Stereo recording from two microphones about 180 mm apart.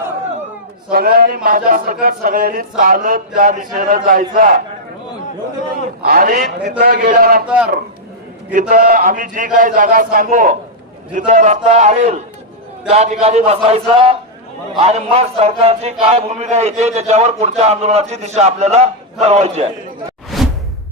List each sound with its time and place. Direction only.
0.9 s speech: 55° right (ahead or behind)
6.1 s speech: 50° right (ahead or behind)
7.4 s a man's voice: 5° right (ahead or behind)
8.5 s a man's voice: 50° right (ahead or behind)
20.3 s whoosh: centre (ahead or behind)